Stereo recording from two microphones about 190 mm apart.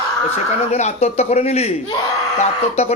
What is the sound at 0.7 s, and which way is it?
Speech, 35° left (ahead or behind).